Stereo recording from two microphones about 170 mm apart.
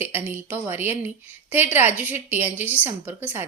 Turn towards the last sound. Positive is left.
turn(degrees=-10)  # may be behind; listen again after turning